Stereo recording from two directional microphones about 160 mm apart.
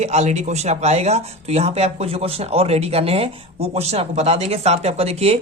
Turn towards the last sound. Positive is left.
turn(degrees=-40)  # may be behind; listen again after turning